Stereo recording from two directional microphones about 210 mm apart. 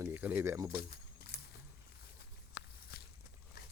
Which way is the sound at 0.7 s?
50° left (ahead or behind).